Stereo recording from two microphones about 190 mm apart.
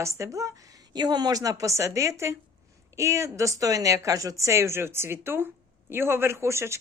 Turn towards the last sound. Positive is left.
turn(degrees=-15)  # may be behind; listen again after turning